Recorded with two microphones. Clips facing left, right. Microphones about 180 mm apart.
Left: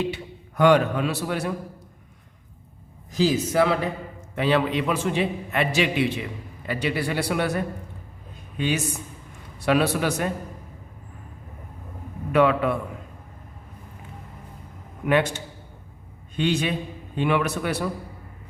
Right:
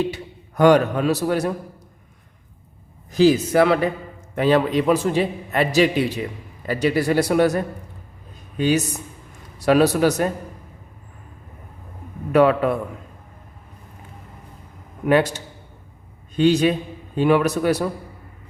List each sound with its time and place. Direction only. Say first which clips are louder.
0.1 s a man's voice: even; 40° right (ahead or behind)
3.1 s a man's voice: right 6 dB; 60° right (ahead or behind)
4.4 s a man's voice: right 4 dB; 40° right (ahead or behind)
12.3 s a man's voice: right 4 dB; 40° right (ahead or behind)
15.0 s a man's voice: right 4 dB; 40° right (ahead or behind)